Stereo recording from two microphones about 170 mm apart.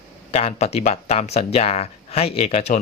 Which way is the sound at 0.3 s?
35° left (ahead or behind).